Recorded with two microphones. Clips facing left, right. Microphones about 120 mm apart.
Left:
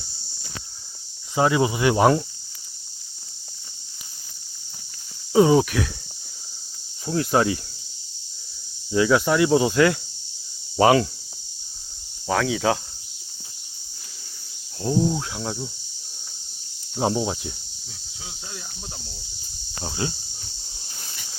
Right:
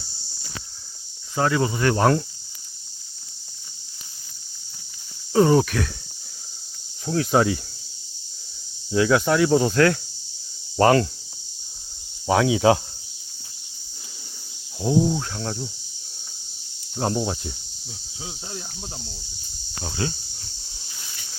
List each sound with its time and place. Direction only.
1.4 s speech: 15° left (ahead or behind)
5.3 s speech: 5° left (ahead or behind)
7.0 s speech: centre (ahead or behind)
8.9 s speech: centre (ahead or behind)
12.3 s speech: 20° right (ahead or behind)
14.8 s speech: 5° right (ahead or behind)
17.0 s speech: 5° left (ahead or behind)
19.8 s speech: 20° left (ahead or behind)
20.8 s a sound: 40° left (ahead or behind)